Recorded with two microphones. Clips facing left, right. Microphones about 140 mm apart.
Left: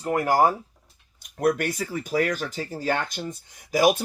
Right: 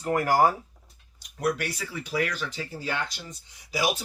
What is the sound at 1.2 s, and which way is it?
Speech, 50° left (ahead or behind).